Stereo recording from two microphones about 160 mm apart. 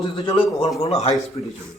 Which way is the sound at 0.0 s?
35° left (ahead or behind).